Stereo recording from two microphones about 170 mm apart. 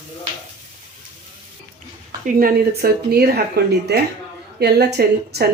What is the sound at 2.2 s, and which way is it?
Speech, 55° right (ahead or behind).